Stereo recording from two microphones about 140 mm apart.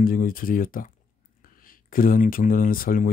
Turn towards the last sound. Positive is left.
turn(degrees=85)